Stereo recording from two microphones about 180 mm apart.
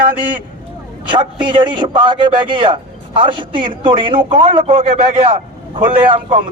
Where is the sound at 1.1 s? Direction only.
25° right (ahead or behind).